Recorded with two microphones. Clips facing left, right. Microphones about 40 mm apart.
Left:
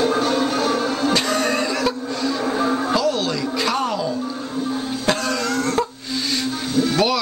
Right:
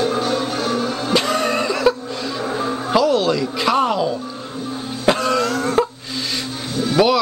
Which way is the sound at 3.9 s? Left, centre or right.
Right.